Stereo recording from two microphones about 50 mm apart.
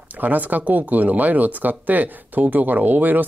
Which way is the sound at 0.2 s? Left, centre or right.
Right.